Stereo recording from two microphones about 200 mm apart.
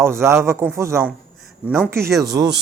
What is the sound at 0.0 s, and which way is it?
A man's voice, 15° right (ahead or behind).